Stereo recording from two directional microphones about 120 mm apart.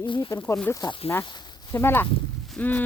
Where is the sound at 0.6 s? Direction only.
30° left (ahead or behind).